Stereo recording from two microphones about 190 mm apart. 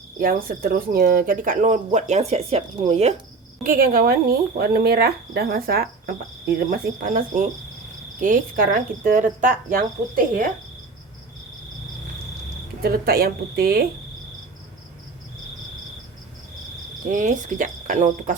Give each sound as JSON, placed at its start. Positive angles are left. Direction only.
{"t": 0.2, "sound": "speech", "side_deg": -50}
{"t": 3.6, "sound": "speech", "side_deg": -50}
{"t": 12.8, "sound": "speech", "side_deg": -50}
{"t": 17.1, "sound": "speech", "side_deg": -45}